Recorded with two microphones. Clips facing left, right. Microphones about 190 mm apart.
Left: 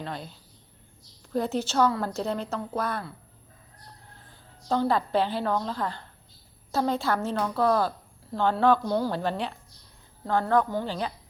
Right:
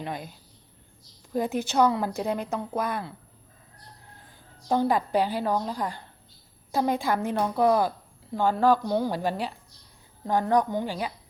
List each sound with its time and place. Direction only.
0.0 s a woman's voice: 15° right (ahead or behind)
4.7 s a woman's voice: 15° right (ahead or behind)